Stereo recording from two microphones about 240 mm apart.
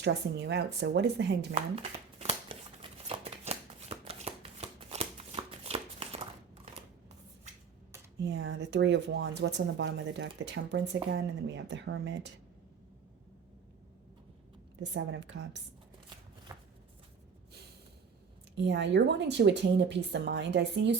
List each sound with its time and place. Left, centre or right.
0.0 s speech: right
1.7 s shuffling cards: right
8.2 s speech: right
14.8 s speech: right
16.5 s shuffling cards: centre
18.6 s speech: right